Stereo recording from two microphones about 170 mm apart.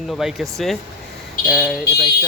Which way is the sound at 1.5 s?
Centre (ahead or behind).